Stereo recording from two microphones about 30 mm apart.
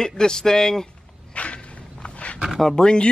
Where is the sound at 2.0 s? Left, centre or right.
Left.